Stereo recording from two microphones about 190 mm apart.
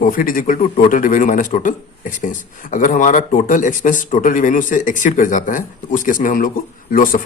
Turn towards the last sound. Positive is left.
turn(degrees=45)  # may be behind; listen again after turning